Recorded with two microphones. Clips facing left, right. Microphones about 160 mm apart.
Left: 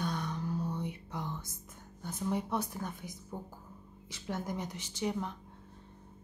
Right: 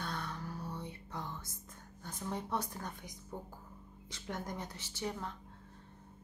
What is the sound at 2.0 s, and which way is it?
Speech, 10° left (ahead or behind).